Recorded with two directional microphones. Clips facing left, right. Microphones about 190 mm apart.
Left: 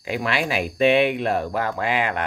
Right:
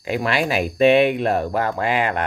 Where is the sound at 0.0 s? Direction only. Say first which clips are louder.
Right 3 dB; 40° right (ahead or behind).